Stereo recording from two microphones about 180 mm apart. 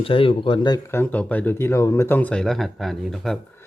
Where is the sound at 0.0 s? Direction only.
30° left (ahead or behind).